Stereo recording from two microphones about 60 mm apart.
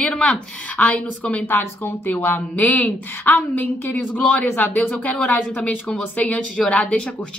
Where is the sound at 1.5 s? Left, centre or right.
Left.